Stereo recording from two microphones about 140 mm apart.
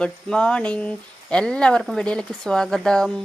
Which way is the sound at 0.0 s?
5° left (ahead or behind).